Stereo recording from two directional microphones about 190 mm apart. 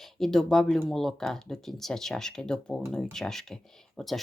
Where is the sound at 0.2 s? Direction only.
Centre (ahead or behind).